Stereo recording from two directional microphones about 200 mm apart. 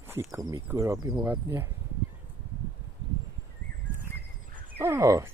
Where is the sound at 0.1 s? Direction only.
15° right (ahead or behind).